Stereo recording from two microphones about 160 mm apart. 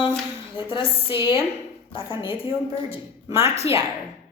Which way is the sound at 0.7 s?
35° left (ahead or behind).